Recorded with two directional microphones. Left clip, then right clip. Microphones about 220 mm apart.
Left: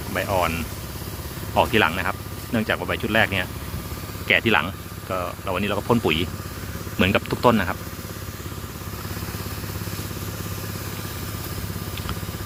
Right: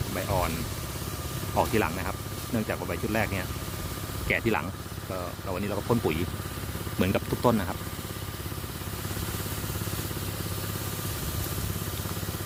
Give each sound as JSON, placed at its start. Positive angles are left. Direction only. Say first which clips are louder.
{"t": 0.1, "sound": "speech", "louder": "left 7 dB", "side_deg": 0}
{"t": 1.5, "sound": "speech", "louder": "left 8 dB", "side_deg": 0}